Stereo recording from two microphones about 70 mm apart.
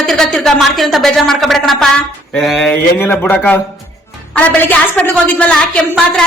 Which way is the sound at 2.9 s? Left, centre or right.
Left.